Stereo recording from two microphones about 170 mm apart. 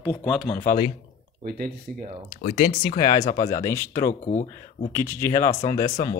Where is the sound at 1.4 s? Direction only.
60° right (ahead or behind).